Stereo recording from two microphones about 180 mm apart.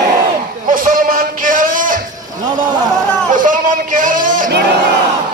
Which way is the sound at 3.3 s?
50° right (ahead or behind).